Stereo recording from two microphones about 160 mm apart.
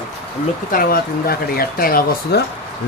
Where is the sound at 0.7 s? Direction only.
65° left (ahead or behind).